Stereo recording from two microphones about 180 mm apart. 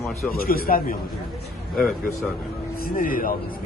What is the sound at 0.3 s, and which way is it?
Speech, 55° left (ahead or behind).